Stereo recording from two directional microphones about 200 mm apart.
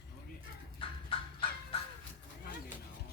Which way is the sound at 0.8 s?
25° left (ahead or behind).